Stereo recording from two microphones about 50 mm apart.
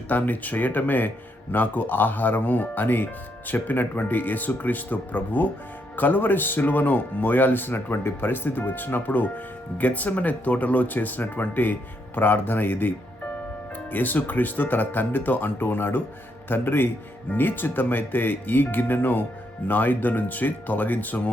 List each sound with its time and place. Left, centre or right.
0.1 s speech: left
13.9 s speech: left